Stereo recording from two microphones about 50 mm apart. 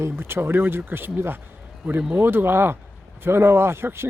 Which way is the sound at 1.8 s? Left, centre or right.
Centre.